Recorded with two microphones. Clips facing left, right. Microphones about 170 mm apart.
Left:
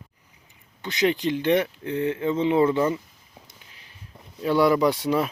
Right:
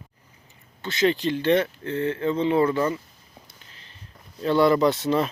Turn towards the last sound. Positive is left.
turn(degrees=10)  # may be behind; listen again after turning